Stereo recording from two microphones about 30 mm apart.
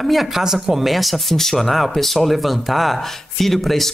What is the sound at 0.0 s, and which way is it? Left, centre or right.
Speech, centre.